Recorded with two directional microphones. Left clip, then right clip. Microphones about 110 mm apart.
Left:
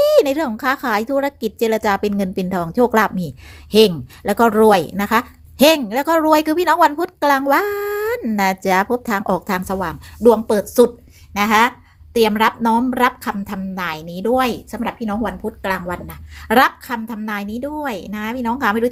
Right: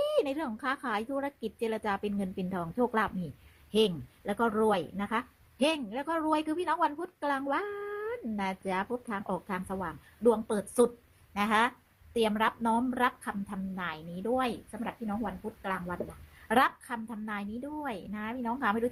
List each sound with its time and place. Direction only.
0.0 s a woman's voice: 20° left (ahead or behind); by 18.9 s 5° left (ahead or behind)